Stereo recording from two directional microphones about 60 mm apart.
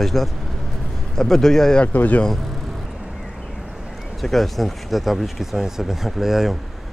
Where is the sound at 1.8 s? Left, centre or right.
Left.